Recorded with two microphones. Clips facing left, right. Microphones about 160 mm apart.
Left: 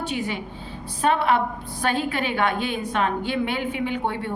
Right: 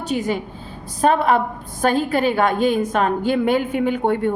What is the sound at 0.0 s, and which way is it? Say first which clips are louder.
A woman's voice: right 5 dB; 40° right (ahead or behind).